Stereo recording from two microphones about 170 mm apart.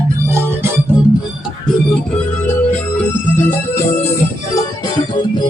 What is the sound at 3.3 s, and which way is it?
Music, 10° left (ahead or behind).